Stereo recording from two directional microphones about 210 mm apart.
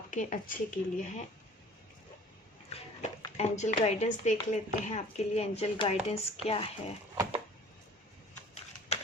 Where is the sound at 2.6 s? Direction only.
30° left (ahead or behind).